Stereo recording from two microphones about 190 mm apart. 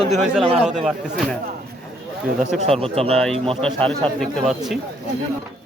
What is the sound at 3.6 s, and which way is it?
A man's voice, 5° left (ahead or behind).